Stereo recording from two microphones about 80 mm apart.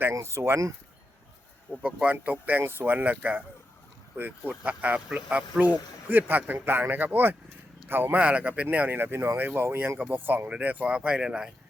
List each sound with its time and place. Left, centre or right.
0.1 s speech: right
1.8 s speech: centre